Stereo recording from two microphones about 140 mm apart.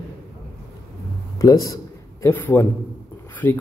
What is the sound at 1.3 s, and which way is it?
A man's voice, 25° left (ahead or behind).